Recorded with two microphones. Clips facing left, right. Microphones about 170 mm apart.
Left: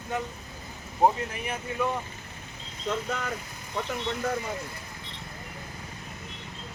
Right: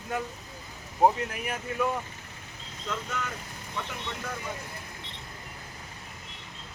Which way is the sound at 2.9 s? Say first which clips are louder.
Left 4 dB; 35° left (ahead or behind).